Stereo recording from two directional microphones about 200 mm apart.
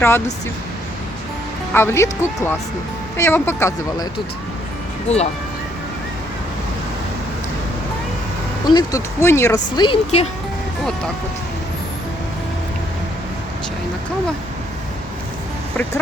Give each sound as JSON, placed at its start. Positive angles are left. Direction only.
{"t": 1.7, "sound": "speech", "side_deg": 10}
{"t": 5.0, "sound": "speech", "side_deg": 30}
{"t": 8.7, "sound": "speech", "side_deg": 15}